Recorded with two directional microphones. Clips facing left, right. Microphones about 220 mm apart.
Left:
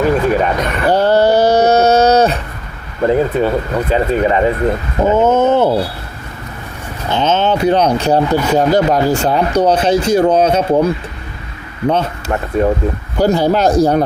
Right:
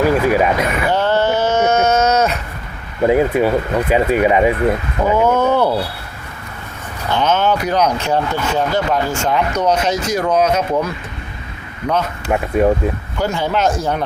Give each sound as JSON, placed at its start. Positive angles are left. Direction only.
{"t": 0.0, "sound": "speech", "side_deg": -5}
{"t": 0.9, "sound": "a sound", "side_deg": 40}
{"t": 3.1, "sound": "speech", "side_deg": -10}
{"t": 4.9, "sound": "speech", "side_deg": 25}
{"t": 7.1, "sound": "speech", "side_deg": 25}
{"t": 12.3, "sound": "speech", "side_deg": -10}
{"t": 13.1, "sound": "speech", "side_deg": 35}